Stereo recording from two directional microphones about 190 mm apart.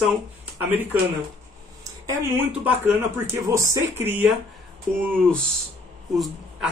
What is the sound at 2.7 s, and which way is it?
Speech, 10° right (ahead or behind).